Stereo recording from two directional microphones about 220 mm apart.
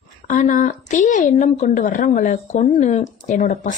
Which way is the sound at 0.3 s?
35° left (ahead or behind).